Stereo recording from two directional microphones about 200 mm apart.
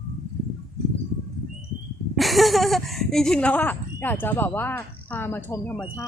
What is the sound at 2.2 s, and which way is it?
Speech, centre (ahead or behind).